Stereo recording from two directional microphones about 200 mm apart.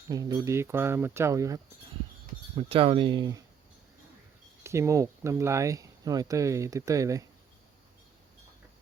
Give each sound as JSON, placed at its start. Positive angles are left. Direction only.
{"t": 0.1, "sound": "speech", "side_deg": -20}
{"t": 2.6, "sound": "speech", "side_deg": -30}
{"t": 4.6, "sound": "speech", "side_deg": -15}